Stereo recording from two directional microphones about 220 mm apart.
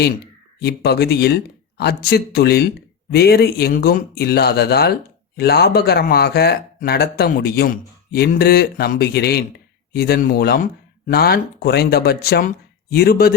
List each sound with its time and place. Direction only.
0.6 s speech: 45° left (ahead or behind)